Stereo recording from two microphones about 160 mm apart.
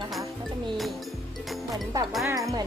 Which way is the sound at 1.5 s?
Centre (ahead or behind).